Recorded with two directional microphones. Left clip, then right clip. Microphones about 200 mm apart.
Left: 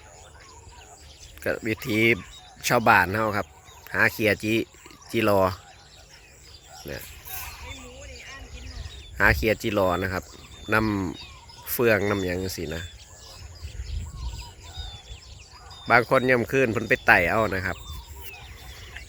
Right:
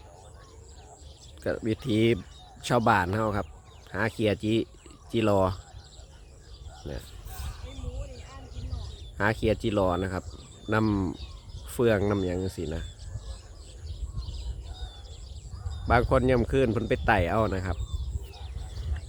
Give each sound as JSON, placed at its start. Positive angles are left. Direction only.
{"t": 1.5, "sound": "speech", "side_deg": 0}
{"t": 7.4, "sound": "a sound", "side_deg": -35}
{"t": 9.1, "sound": "speech", "side_deg": 0}
{"t": 15.9, "sound": "speech", "side_deg": 0}